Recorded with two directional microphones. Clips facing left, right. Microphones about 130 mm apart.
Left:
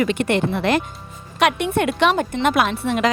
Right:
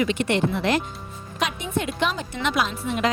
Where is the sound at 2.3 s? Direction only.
50° left (ahead or behind); by 3.1 s 75° left (ahead or behind).